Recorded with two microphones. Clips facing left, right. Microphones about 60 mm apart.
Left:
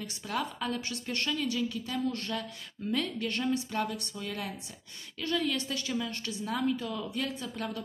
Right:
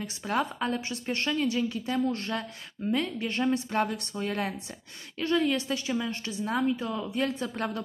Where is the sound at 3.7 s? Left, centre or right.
Right.